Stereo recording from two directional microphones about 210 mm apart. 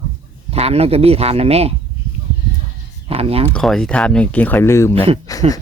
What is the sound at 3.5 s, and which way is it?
Speech, 5° left (ahead or behind).